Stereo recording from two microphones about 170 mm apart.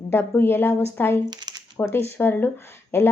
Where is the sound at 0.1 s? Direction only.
15° left (ahead or behind).